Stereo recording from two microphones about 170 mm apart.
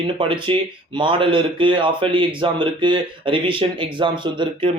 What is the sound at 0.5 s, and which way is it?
A man's voice, 30° right (ahead or behind).